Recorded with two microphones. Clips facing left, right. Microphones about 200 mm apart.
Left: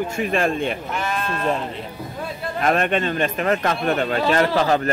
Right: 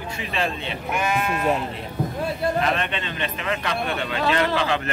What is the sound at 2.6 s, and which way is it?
A man's voice, 45° left (ahead or behind).